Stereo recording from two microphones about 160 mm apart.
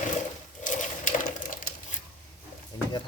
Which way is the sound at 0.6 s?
55° left (ahead or behind).